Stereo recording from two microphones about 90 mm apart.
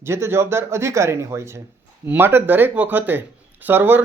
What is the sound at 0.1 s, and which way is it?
Speech, 30° right (ahead or behind).